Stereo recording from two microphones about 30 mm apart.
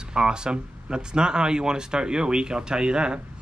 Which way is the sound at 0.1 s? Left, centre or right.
Right.